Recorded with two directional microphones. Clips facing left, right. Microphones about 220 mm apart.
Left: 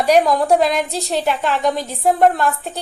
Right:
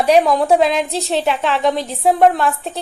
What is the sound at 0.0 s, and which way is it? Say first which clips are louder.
A woman's voice: right 1 dB; centre (ahead or behind).